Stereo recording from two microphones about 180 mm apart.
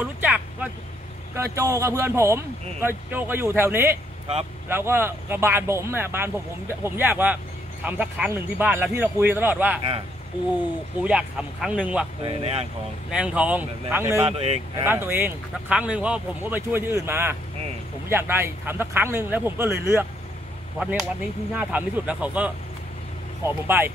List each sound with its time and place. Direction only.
0.2 s vehicle: 10° right (ahead or behind)
1.3 s speech: 15° right (ahead or behind)
11.1 s speech: 5° right (ahead or behind)
12.2 s speech: 35° right (ahead or behind)
13.1 s speech: 5° right (ahead or behind)
14.2 s speech: 35° right (ahead or behind)
14.8 s speech: 10° right (ahead or behind)
20.8 s speech: 5° right (ahead or behind)